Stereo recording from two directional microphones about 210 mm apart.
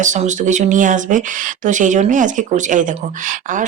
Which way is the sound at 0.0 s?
35° right (ahead or behind).